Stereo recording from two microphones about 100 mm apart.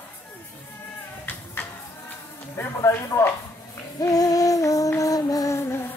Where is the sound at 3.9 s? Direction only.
40° left (ahead or behind).